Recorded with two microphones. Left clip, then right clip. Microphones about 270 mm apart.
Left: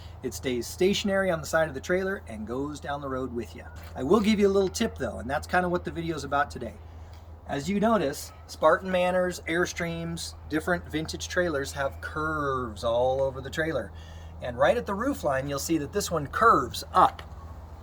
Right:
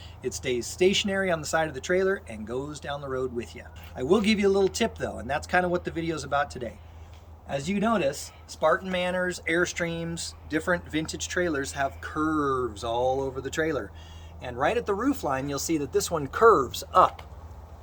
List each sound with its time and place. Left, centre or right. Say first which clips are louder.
0.2 s speech: right 2 dB; centre; by 17.1 s right